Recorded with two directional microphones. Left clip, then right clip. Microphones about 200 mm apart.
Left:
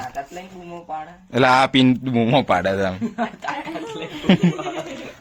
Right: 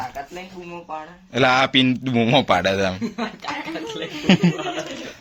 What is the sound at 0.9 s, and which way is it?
A man's voice, 25° left (ahead or behind).